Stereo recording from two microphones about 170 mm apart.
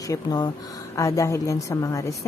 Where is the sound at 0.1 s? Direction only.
25° left (ahead or behind).